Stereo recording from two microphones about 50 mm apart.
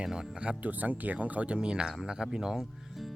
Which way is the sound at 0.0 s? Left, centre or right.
Centre.